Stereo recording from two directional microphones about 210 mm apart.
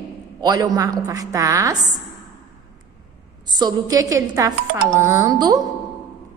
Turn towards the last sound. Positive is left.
turn(degrees=-20)  # may be behind; listen again after turning